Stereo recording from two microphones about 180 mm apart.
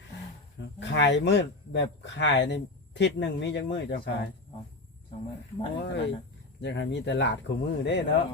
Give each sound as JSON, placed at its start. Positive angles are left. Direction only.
{"t": 0.8, "sound": "speech", "side_deg": 80}
{"t": 5.8, "sound": "speech", "side_deg": 70}